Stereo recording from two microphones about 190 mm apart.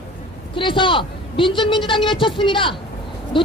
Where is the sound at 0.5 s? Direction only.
25° left (ahead or behind).